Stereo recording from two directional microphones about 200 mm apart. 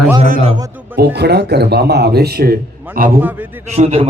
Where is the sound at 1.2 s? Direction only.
55° right (ahead or behind).